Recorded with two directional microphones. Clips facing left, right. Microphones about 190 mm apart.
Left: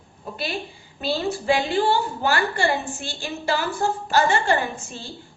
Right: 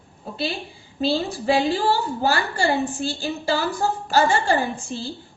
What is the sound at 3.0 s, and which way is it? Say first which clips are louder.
A woman's voice: right 4 dB; 35° right (ahead or behind).